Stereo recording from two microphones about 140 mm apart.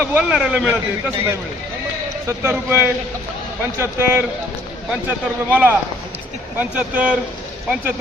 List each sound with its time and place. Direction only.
0.0 s speech: 10° right (ahead or behind)